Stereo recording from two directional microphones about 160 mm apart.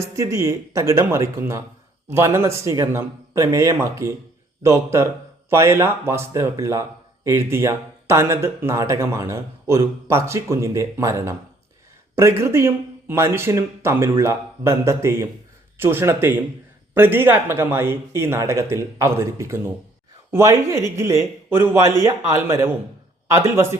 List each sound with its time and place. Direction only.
0.0 s speech: 20° right (ahead or behind)